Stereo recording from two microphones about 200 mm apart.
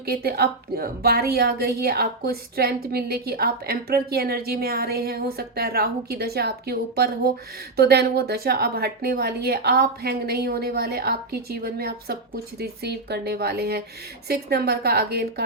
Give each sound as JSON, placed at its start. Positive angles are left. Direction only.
{"t": 0.0, "sound": "a woman's voice", "side_deg": -50}